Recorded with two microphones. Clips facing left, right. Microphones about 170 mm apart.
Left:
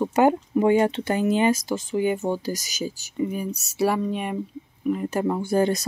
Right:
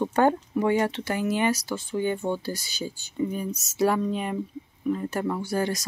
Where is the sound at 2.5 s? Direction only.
90° left.